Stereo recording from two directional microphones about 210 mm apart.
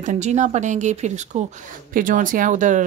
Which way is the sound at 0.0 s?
35° right (ahead or behind).